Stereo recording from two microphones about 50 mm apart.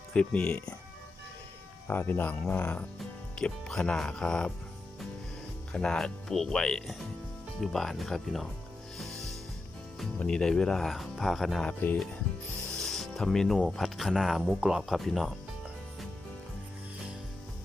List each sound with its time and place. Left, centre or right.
0.1 s speech: centre
1.9 s speech: left
3.3 s speech: centre
5.7 s speech: centre
10.2 s speech: centre
10.8 s speech: centre
11.8 s speech: left
12.7 s music: centre
13.8 s speech: centre
14.9 s speech: centre